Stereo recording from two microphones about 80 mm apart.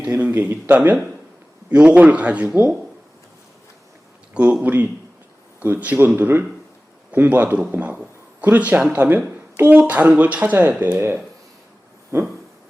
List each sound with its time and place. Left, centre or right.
0.2 s a man's voice: right
4.6 s speech: centre
12.1 s a sound: right